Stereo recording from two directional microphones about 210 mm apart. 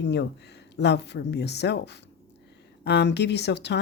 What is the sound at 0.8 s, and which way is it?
Speech, 55° left (ahead or behind).